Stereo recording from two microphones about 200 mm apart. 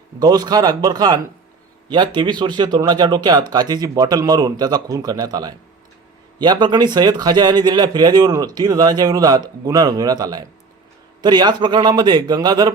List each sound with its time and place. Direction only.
0.2 s speech: 20° right (ahead or behind)